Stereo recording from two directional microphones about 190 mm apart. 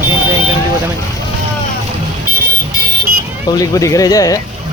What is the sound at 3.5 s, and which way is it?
Speech, 15° left (ahead or behind).